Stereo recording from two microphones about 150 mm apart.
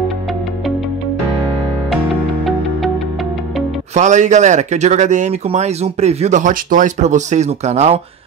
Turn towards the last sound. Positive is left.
turn(degrees=-45)  # may be behind; listen again after turning